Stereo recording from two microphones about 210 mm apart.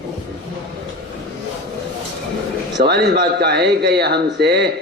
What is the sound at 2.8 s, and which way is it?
A man's voice, 50° right (ahead or behind).